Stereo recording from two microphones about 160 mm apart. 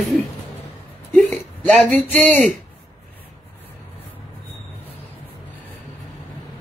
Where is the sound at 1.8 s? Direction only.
5° left (ahead or behind).